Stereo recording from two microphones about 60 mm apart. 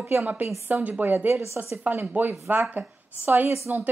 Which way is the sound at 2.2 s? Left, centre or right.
Right.